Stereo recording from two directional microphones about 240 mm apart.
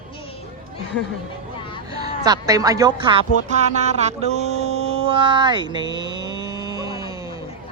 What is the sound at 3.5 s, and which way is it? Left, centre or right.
Music, right.